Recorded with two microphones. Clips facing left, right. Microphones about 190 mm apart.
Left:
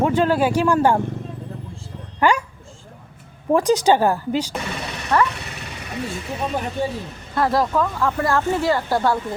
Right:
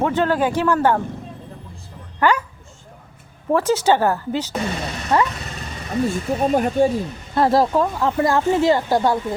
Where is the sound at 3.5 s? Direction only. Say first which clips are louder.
Left 1 dB; 15° left (ahead or behind).